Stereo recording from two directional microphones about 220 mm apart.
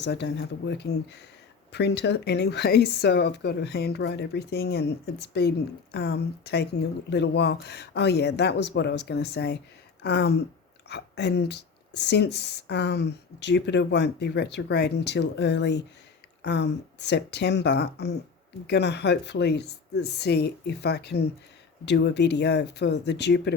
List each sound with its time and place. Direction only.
0.0 s speech: 50° left (ahead or behind)